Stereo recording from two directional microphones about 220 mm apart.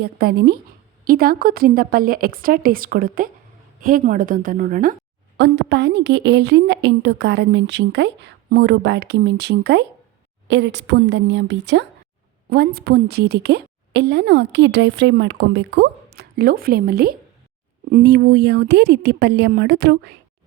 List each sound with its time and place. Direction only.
0.0 s a woman's voice: 45° right (ahead or behind)
5.4 s a woman's voice: 50° right (ahead or behind)